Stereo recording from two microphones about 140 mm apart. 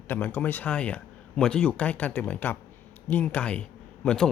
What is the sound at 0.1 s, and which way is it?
Speech, 15° left (ahead or behind).